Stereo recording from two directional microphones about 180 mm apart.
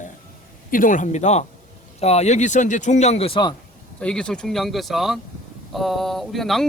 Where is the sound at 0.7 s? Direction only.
50° left (ahead or behind); by 3.5 s 30° left (ahead or behind).